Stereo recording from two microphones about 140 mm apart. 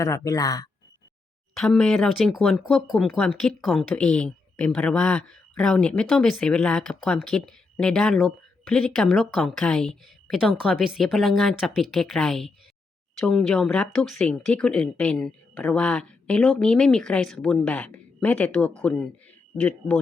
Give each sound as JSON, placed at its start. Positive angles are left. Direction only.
{"t": 0.0, "sound": "speech", "side_deg": 25}
{"t": 1.5, "sound": "speech", "side_deg": 5}